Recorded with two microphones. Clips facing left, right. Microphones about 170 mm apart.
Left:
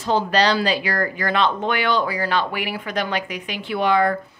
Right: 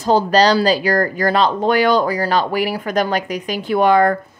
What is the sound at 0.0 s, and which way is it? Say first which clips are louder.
A woman's voice: right 5 dB; 40° right (ahead or behind).